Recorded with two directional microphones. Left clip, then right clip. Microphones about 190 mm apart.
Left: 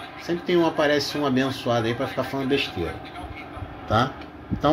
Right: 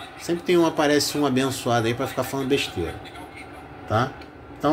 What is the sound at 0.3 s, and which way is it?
Speech, 15° right (ahead or behind).